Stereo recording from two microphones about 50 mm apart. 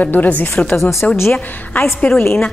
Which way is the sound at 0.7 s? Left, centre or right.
Left.